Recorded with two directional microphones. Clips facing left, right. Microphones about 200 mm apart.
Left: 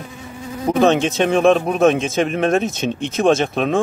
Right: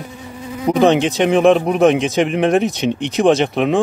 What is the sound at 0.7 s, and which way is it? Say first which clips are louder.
A man's voice: right 2 dB; 15° right (ahead or behind).